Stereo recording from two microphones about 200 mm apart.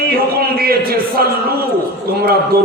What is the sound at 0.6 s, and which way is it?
Speech, 50° right (ahead or behind).